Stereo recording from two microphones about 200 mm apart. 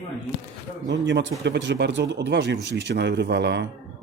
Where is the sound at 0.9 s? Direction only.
65° right (ahead or behind).